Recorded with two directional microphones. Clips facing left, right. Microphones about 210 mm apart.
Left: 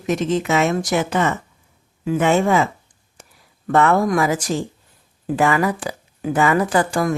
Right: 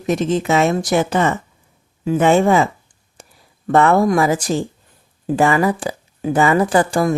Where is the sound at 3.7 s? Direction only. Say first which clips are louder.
Right 3 dB; 30° right (ahead or behind).